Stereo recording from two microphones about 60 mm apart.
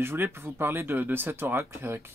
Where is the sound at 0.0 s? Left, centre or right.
Right.